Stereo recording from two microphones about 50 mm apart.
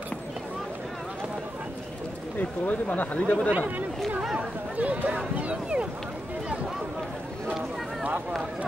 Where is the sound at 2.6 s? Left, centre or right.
Left.